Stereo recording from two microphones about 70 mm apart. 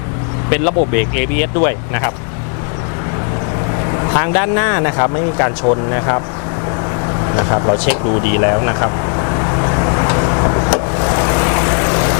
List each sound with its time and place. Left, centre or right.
0.5 s speech: centre
3.7 s speech: left
7.3 s vehicle: left